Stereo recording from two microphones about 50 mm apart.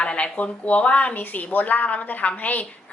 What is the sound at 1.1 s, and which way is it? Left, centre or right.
A woman's voice, left.